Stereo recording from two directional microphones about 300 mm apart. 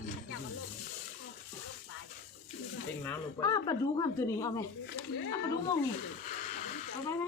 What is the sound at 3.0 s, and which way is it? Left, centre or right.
Speech, centre.